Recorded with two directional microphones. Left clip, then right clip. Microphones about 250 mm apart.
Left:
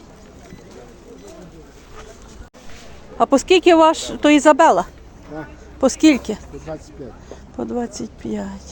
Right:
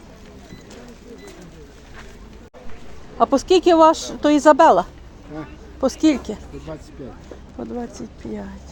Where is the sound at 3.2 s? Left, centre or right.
Centre.